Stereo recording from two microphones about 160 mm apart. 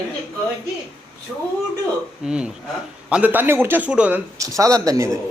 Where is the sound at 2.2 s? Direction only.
5° right (ahead or behind).